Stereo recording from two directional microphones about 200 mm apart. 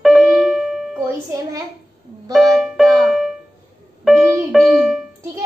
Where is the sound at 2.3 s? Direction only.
Centre (ahead or behind).